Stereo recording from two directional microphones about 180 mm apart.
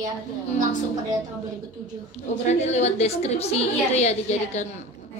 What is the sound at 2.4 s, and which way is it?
A woman's voice, 40° left (ahead or behind).